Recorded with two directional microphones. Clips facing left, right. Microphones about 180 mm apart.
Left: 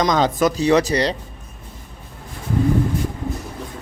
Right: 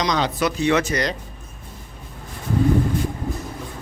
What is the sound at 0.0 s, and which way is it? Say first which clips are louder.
A man's voice: left 4 dB; 45° left (ahead or behind).